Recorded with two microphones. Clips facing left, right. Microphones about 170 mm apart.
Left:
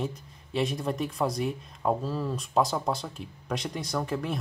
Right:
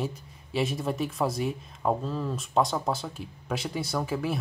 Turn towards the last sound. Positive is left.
turn(degrees=-5)  # may be behind; listen again after turning